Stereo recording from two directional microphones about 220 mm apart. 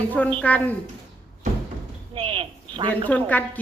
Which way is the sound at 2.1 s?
25° right (ahead or behind).